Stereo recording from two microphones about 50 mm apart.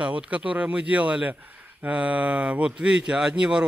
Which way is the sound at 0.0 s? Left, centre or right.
Right.